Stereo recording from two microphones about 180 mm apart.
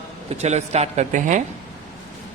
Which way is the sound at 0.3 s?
40° right (ahead or behind).